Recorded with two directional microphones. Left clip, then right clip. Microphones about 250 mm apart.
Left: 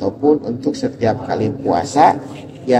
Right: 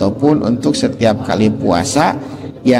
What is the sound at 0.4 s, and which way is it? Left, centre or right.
A man's voice, right.